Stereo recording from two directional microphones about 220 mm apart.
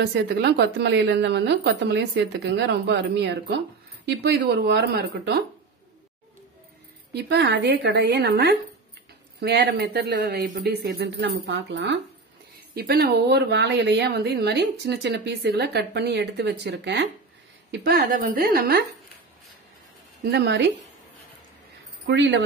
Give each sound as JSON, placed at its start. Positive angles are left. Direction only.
{"t": 0.0, "sound": "speech", "side_deg": -50}
{"t": 7.2, "sound": "speech", "side_deg": -50}
{"t": 17.6, "sound": "a woman's voice", "side_deg": -40}
{"t": 20.2, "sound": "speech", "side_deg": -50}
{"t": 22.0, "sound": "speech", "side_deg": -55}